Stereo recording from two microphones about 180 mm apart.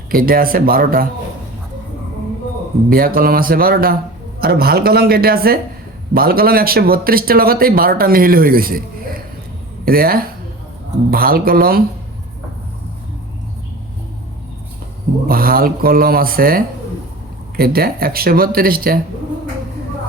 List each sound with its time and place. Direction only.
0.1 s speech: 55° right (ahead or behind)
2.9 s speech: 55° right (ahead or behind)
15.3 s speech: 55° right (ahead or behind)